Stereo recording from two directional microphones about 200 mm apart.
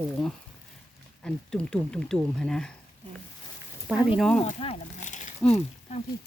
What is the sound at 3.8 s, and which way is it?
Speech, 5° right (ahead or behind).